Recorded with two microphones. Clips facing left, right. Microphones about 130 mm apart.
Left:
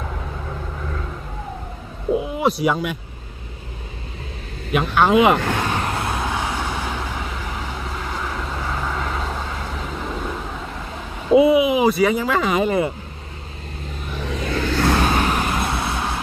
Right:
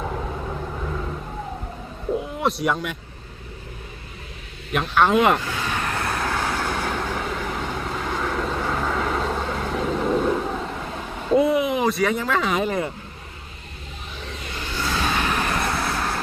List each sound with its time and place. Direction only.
2.1 s speech: 5° left (ahead or behind)
4.9 s speech: centre (ahead or behind)
5.4 s speech: 60° left (ahead or behind)
5.6 s vehicle: 30° left (ahead or behind); by 9.9 s centre (ahead or behind)
11.3 s speech: 5° left (ahead or behind)
14.3 s a sound: 90° left; by 15.0 s 60° left (ahead or behind)
15.0 s vehicle: 35° left (ahead or behind)